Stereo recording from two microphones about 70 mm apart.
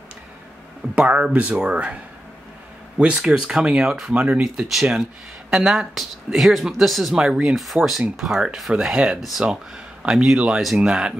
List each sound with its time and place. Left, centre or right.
0.9 s speech: centre
3.0 s speech: centre
4.1 s speech: centre
7.2 s speech: centre
10.0 s speech: centre